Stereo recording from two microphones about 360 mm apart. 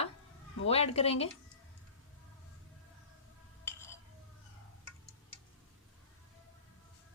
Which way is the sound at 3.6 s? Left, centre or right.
Centre.